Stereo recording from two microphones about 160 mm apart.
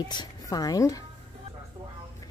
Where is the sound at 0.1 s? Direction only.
25° left (ahead or behind).